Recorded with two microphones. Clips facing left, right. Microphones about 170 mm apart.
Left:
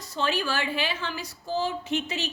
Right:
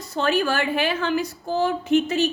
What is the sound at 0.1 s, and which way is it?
A woman's voice, 55° right (ahead or behind).